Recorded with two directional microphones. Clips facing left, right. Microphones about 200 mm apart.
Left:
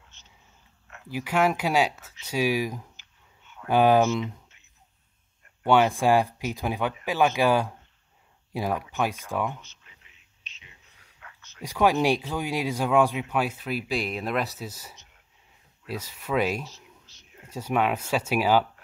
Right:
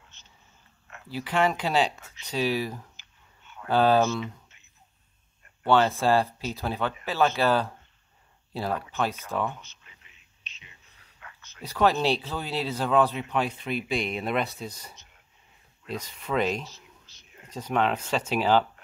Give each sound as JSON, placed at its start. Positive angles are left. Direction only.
{"t": 1.0, "sound": "speech", "side_deg": 10}
{"t": 5.6, "sound": "speech", "side_deg": 15}
{"t": 11.6, "sound": "speech", "side_deg": 10}